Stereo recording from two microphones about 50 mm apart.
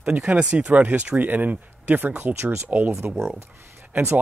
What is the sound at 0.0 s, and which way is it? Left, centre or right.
Speech, right.